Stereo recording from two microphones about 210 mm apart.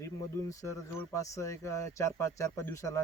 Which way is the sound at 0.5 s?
15° left (ahead or behind).